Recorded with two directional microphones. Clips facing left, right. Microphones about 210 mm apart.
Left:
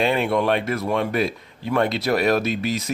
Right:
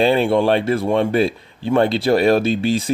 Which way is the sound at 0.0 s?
30° right (ahead or behind).